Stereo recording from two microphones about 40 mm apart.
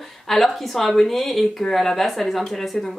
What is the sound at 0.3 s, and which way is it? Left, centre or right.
Speech, centre.